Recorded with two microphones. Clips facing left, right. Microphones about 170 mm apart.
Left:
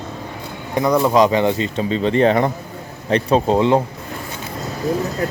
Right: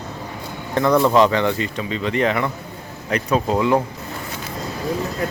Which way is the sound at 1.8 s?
35° left (ahead or behind).